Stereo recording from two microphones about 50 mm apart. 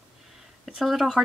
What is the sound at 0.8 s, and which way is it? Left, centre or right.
Speech, centre.